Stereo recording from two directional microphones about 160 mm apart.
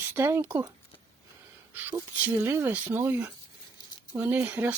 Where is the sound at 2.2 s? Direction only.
15° right (ahead or behind).